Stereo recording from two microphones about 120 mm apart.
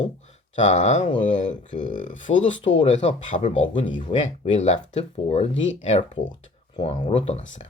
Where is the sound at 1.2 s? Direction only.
90° left.